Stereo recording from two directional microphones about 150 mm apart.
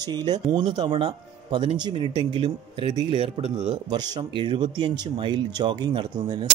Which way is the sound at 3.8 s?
25° right (ahead or behind).